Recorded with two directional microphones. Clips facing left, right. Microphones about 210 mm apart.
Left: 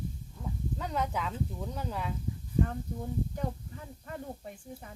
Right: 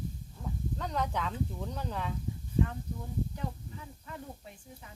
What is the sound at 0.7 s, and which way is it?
Speech, 5° left (ahead or behind).